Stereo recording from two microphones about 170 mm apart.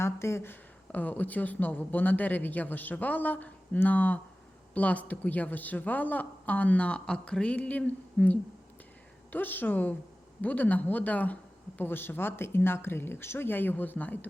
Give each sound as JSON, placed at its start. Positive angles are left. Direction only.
{"t": 0.0, "sound": "a woman's voice", "side_deg": 15}